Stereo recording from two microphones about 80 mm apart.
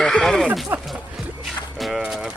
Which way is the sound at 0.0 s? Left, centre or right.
Centre.